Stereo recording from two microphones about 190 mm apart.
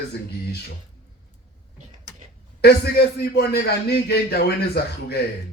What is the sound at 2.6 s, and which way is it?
A man's voice, 55° left (ahead or behind).